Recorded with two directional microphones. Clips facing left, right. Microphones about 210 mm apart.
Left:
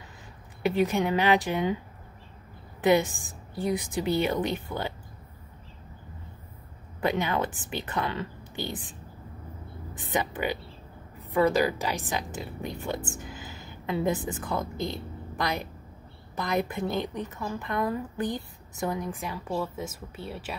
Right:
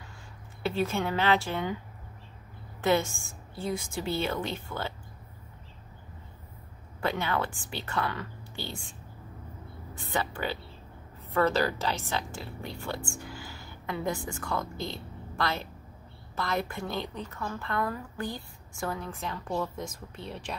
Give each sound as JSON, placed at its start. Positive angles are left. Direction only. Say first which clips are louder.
{"t": 0.6, "sound": "a woman's voice", "louder": "left 4 dB", "side_deg": 15}
{"t": 2.8, "sound": "a woman's voice", "louder": "left 4 dB", "side_deg": 15}
{"t": 7.0, "sound": "a woman's voice", "louder": "left 3 dB", "side_deg": 15}
{"t": 9.9, "sound": "a woman's voice", "louder": "left 3 dB", "side_deg": 15}